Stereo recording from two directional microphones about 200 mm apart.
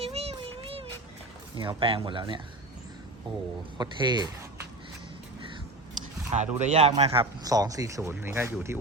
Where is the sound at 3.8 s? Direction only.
20° right (ahead or behind).